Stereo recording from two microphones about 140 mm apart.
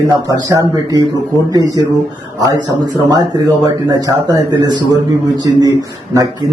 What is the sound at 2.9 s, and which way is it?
Speech, 25° right (ahead or behind).